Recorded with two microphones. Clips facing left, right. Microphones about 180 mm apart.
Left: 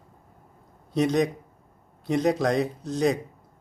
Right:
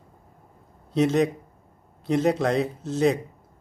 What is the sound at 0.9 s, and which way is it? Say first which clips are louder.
A man's voice: right 2 dB; centre (ahead or behind).